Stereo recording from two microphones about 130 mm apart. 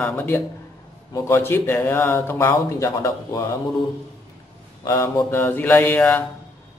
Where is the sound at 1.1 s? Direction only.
20° left (ahead or behind).